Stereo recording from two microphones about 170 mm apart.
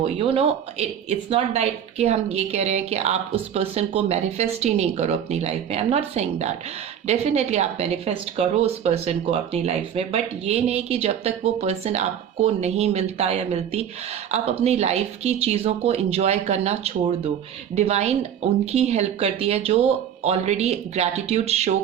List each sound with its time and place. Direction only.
0.0 s speech: 35° right (ahead or behind)